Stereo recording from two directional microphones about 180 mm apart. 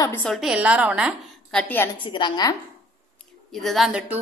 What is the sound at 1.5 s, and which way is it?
Speech, 10° left (ahead or behind).